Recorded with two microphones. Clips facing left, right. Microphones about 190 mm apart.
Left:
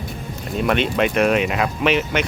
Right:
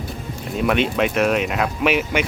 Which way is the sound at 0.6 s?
Centre (ahead or behind).